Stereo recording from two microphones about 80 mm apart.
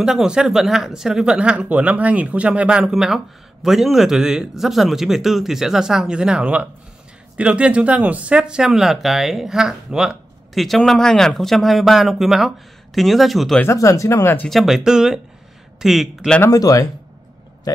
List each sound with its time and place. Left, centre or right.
0.0 s speech: centre
13.7 s speech: left
14.5 s speech: centre
16.4 s speech: left